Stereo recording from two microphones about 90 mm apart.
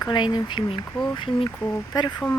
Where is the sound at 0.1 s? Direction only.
55° left (ahead or behind).